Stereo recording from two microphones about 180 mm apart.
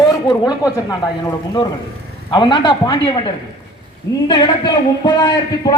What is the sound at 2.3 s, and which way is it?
A man's voice, 25° left (ahead or behind).